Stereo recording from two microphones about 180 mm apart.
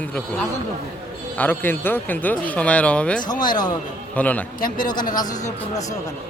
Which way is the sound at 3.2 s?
25° left (ahead or behind).